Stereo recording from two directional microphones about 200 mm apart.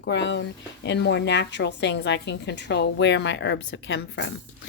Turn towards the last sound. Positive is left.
turn(degrees=65)  # may be behind; listen again after turning